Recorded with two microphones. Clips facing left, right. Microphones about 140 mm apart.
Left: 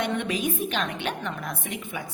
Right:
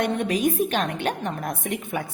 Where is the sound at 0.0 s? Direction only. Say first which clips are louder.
Right 4 dB; 45° right (ahead or behind).